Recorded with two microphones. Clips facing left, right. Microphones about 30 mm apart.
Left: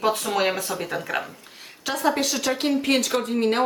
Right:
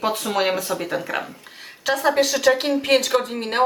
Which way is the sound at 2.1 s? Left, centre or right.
Right.